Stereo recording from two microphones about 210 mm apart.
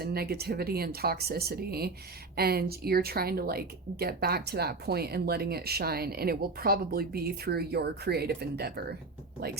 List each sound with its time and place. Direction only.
0.0 s speech: 50° right (ahead or behind)